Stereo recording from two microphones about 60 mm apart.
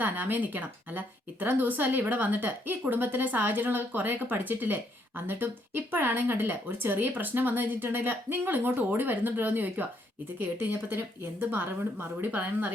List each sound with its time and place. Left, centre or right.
0.0 s speech: right